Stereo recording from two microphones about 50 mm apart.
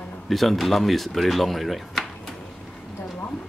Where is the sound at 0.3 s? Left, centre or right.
Centre.